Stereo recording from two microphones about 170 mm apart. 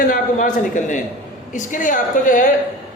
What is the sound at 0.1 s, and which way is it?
Speech, 50° left (ahead or behind).